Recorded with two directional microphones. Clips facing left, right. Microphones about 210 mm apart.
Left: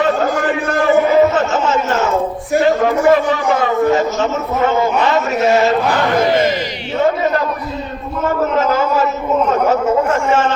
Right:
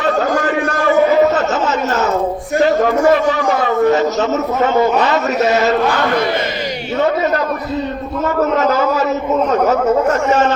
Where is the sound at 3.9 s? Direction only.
40° right (ahead or behind).